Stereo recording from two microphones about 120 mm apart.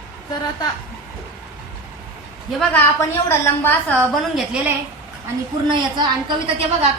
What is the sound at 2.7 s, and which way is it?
A woman's voice, 20° left (ahead or behind).